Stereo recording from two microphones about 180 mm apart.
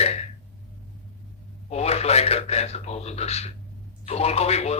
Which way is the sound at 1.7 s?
35° left (ahead or behind).